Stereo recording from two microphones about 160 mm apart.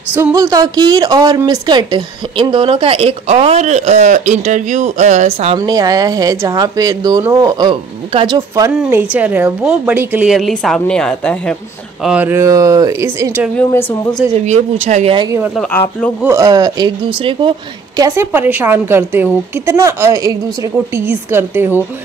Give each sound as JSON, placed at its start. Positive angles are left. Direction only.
{"t": 0.1, "sound": "a woman's voice", "side_deg": -15}
{"t": 5.6, "sound": "speech", "side_deg": -20}
{"t": 9.1, "sound": "a woman's voice", "side_deg": -10}
{"t": 12.0, "sound": "a woman's voice", "side_deg": -10}
{"t": 14.4, "sound": "speech", "side_deg": -45}
{"t": 15.5, "sound": "speech", "side_deg": 10}
{"t": 16.2, "sound": "a woman's voice", "side_deg": -20}
{"t": 20.7, "sound": "a woman's voice", "side_deg": -10}